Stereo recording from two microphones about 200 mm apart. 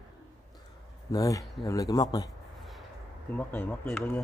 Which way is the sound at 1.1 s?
15° left (ahead or behind).